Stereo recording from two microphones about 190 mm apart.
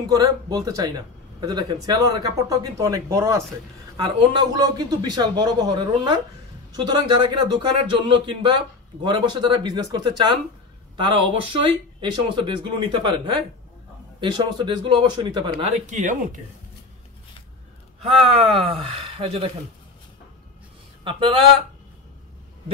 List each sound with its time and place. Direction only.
0.1 s speech: 20° right (ahead or behind)
14.2 s speech: 20° right (ahead or behind)
15.9 s speech: 40° right (ahead or behind)
18.0 s speech: 30° right (ahead or behind)
21.0 s speech: 25° right (ahead or behind)